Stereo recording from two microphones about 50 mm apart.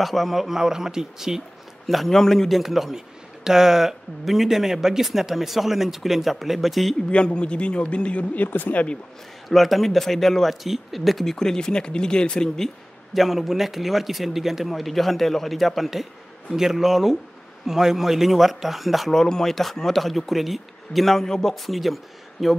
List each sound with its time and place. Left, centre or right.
0.0 s a man's voice: centre
1.9 s speech: centre
7.1 s speech: left
8.5 s speech: left
9.5 s speech: centre
11.3 s speech: centre
13.1 s speech: centre
19.1 s speech: centre